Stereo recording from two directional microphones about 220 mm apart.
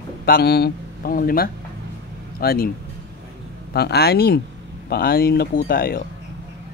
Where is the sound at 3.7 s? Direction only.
45° left (ahead or behind).